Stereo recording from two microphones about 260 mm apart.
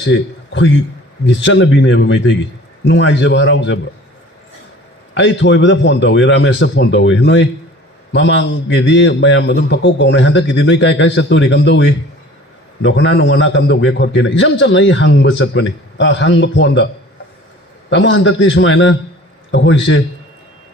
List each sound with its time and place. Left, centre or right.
0.0 s a man's voice: left
5.1 s a man's voice: left